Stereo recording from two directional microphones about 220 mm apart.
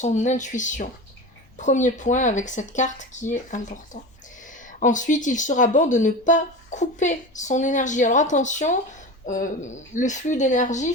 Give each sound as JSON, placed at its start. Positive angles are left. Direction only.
{"t": 0.0, "sound": "speech", "side_deg": 35}
{"t": 4.8, "sound": "speech", "side_deg": 35}